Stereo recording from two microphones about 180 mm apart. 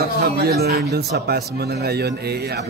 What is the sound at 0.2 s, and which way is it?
Speech, 60° right (ahead or behind).